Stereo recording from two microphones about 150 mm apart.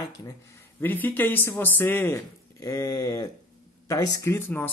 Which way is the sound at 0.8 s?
10° left (ahead or behind).